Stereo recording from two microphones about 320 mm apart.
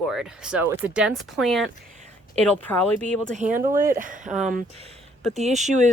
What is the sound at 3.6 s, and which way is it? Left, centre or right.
Speech, right.